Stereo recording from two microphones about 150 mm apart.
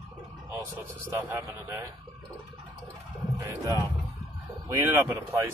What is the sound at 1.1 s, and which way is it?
Speech, 15° right (ahead or behind).